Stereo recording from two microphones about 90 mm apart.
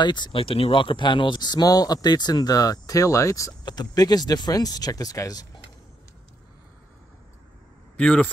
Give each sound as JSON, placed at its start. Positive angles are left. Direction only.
{"t": 0.0, "sound": "speech", "side_deg": 55}
{"t": 3.6, "sound": "speech", "side_deg": 50}
{"t": 8.0, "sound": "speech", "side_deg": 10}